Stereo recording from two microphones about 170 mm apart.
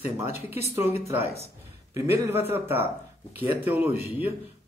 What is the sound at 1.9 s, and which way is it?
Speech, 15° right (ahead or behind).